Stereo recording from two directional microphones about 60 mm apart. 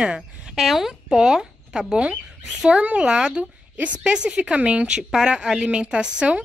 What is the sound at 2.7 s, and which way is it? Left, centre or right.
A woman's voice, centre.